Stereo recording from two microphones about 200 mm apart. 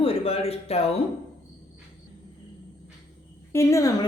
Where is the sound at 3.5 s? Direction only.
15° left (ahead or behind).